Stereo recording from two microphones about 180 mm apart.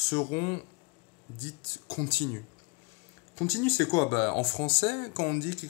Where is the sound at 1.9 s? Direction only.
25° left (ahead or behind).